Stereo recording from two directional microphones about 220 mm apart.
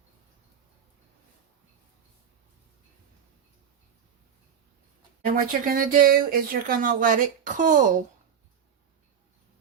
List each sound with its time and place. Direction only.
5.2 s speech: 40° right (ahead or behind)